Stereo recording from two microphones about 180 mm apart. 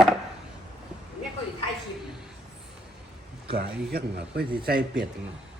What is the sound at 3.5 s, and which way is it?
A man's voice, 60° right (ahead or behind).